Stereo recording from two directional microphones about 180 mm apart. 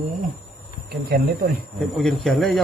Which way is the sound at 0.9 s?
60° right (ahead or behind).